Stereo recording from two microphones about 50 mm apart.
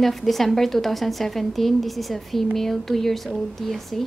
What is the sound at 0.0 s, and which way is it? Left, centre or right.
A woman's voice, centre.